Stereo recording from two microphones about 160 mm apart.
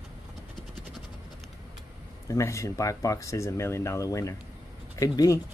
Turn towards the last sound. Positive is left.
turn(degrees=20)  # may be behind; listen again after turning